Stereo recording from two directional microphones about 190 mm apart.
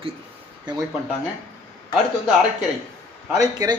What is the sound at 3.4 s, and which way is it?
Speech, 20° right (ahead or behind).